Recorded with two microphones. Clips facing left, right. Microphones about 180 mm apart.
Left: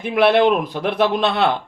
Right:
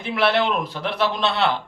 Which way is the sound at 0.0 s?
50° left (ahead or behind).